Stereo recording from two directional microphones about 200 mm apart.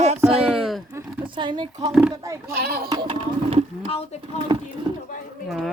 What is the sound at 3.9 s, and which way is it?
Speech, 30° left (ahead or behind).